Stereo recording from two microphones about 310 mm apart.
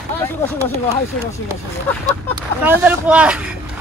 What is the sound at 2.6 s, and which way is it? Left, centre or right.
Speech, centre.